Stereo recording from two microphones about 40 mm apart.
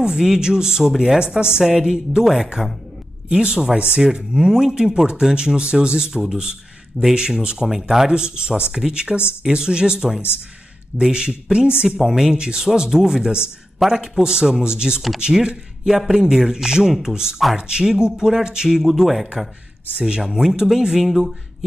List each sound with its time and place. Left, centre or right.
0.0 s speech: centre
3.3 s speech: right
4.0 s speech: centre
7.6 s speech: centre
8.1 s speech: right
12.0 s speech: centre
12.4 s speech: centre
13.8 s a man's voice: centre
14.2 s speech: right
20.0 s speech: right; by 21.4 s centre